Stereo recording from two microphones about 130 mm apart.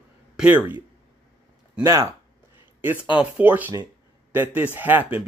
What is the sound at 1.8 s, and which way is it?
Speech, 25° right (ahead or behind).